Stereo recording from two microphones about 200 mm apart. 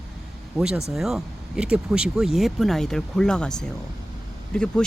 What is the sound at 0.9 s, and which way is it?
Speech, centre (ahead or behind).